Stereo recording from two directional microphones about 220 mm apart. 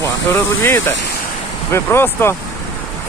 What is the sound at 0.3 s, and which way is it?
Speech, 10° left (ahead or behind).